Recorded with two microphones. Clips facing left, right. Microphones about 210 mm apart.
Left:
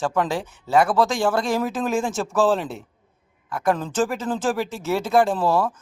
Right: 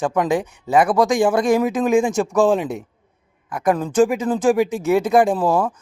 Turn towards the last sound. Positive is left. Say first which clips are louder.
# right 3 dB
turn(degrees=-15)  # may be behind; listen again after turning